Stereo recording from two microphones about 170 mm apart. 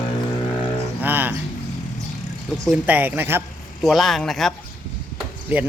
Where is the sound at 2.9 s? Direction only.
10° right (ahead or behind).